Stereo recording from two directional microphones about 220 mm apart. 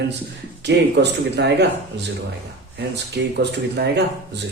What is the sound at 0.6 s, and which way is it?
Speech, 50° right (ahead or behind).